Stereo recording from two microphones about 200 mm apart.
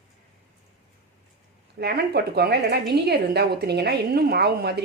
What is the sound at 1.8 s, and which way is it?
A woman's voice, 55° right (ahead or behind).